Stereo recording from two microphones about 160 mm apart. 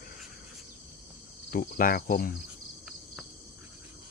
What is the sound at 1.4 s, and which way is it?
Speech, 65° left (ahead or behind).